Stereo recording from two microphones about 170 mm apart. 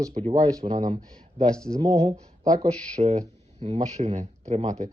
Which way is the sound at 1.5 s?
5° left (ahead or behind).